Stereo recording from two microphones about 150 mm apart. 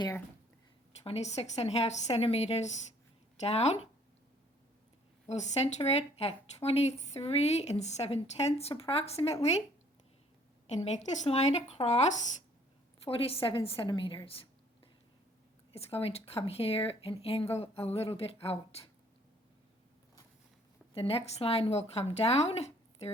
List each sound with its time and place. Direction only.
1.0 s speech: 45° left (ahead or behind)
5.2 s speech: 45° left (ahead or behind)
10.8 s speech: 50° left (ahead or behind)
13.1 s speech: 40° left (ahead or behind)
15.7 s speech: 40° left (ahead or behind)
20.9 s speech: 40° left (ahead or behind)